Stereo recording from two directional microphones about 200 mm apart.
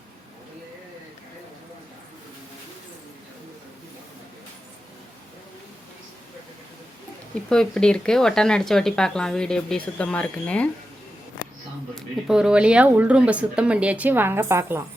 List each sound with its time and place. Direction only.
7.5 s speech: 5° left (ahead or behind)
11.9 s speech: 5° right (ahead or behind)